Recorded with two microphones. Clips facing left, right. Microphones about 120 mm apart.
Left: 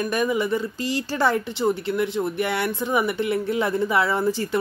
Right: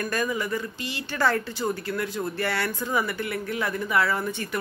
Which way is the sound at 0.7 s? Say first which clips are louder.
Left 8 dB; 35° left (ahead or behind).